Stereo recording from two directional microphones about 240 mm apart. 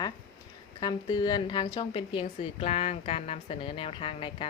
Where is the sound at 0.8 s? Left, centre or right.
Centre.